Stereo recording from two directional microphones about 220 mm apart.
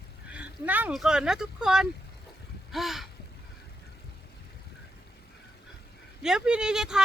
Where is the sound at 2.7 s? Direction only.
Centre (ahead or behind).